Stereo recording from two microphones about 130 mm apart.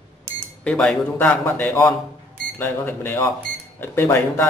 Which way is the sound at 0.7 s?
10° left (ahead or behind).